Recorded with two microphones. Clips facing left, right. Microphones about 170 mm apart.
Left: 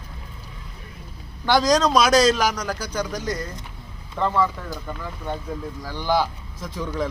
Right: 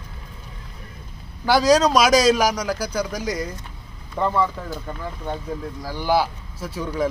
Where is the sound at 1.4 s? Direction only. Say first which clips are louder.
Right 2 dB; 10° right (ahead or behind).